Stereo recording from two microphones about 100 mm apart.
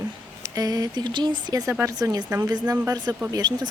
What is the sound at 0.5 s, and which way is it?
Speech, 40° right (ahead or behind).